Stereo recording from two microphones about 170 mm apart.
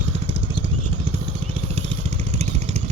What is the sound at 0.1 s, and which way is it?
Vehicle, 35° right (ahead or behind).